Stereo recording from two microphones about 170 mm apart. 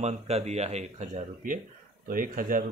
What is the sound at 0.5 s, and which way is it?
Speech, 40° right (ahead or behind).